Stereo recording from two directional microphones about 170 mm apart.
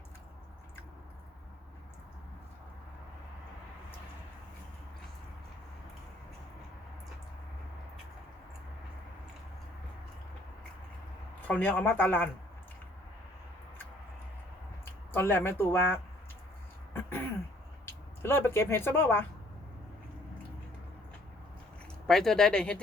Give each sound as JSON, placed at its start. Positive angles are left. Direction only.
{"t": 11.3, "sound": "speech", "side_deg": 10}
{"t": 15.1, "sound": "speech", "side_deg": 15}
{"t": 16.9, "sound": "a sound", "side_deg": 15}
{"t": 17.8, "sound": "speech", "side_deg": 15}
{"t": 22.0, "sound": "speech", "side_deg": 0}